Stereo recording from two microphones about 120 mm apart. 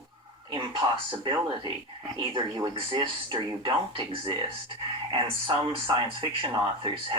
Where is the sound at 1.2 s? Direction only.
40° right (ahead or behind).